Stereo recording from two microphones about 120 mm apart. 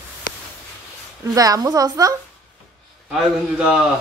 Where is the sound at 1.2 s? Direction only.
30° right (ahead or behind).